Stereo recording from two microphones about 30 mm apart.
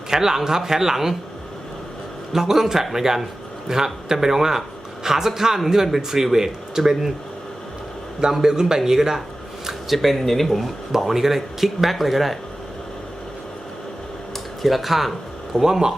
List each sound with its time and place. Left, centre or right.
0.1 s speech: centre
2.3 s speech: centre
8.3 s speech: centre
9.9 s speech: centre
11.0 s speech: centre
14.6 s speech: centre
15.5 s speech: centre